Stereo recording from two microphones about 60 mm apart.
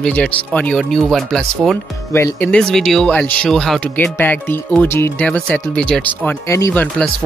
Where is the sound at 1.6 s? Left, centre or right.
Centre.